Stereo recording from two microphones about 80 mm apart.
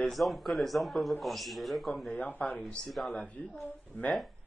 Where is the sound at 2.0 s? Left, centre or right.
Centre.